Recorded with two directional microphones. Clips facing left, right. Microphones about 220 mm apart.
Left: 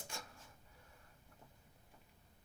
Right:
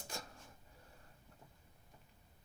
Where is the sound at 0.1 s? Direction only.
40° right (ahead or behind).